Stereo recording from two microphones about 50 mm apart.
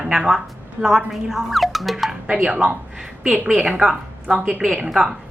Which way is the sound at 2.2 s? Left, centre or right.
Centre.